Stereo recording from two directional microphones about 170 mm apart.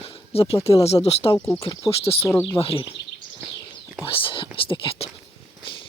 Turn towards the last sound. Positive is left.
turn(degrees=35)  # may be behind; listen again after turning